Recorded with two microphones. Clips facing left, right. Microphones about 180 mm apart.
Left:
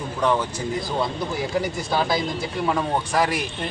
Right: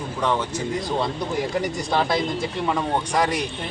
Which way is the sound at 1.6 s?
5° left (ahead or behind).